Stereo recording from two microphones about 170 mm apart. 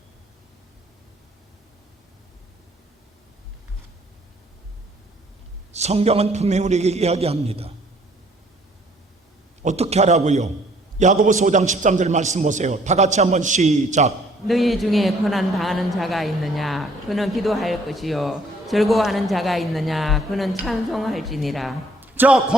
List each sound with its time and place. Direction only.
5.7 s a man's voice: 40° right (ahead or behind)
9.6 s a man's voice: 40° right (ahead or behind)
14.4 s a woman's voice: centre (ahead or behind)
22.0 s a man's voice: 10° right (ahead or behind)